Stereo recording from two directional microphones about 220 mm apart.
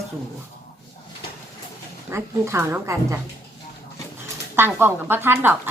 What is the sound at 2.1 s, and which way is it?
A woman's voice, 10° right (ahead or behind).